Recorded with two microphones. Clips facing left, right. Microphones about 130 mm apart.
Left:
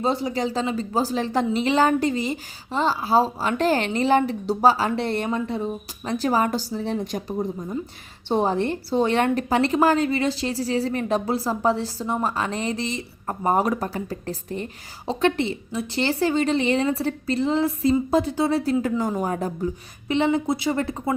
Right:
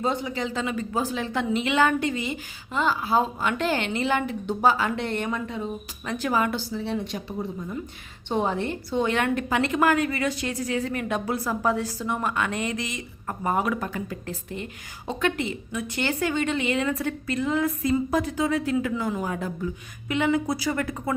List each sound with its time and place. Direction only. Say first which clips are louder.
0.0 s a woman's voice: left 3 dB; 35° left (ahead or behind)